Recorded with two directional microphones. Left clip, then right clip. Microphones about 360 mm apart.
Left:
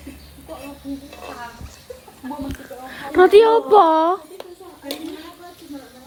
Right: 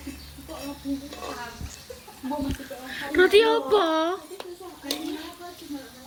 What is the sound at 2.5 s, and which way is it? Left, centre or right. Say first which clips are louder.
Speech: left 2 dB; left.